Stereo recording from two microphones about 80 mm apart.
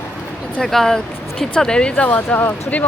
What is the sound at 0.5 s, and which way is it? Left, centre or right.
Speech, centre.